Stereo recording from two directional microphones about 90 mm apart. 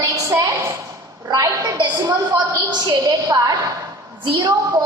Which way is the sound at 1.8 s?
45° right (ahead or behind).